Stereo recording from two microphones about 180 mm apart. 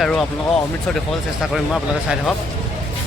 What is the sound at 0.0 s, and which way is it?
Speech, centre (ahead or behind).